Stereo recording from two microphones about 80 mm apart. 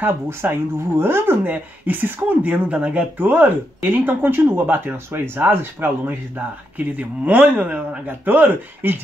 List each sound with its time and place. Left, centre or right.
0.0 s speech: right